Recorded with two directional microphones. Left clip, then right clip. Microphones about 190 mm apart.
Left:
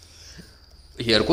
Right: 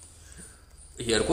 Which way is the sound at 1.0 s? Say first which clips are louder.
Left 6 dB; 50° left (ahead or behind).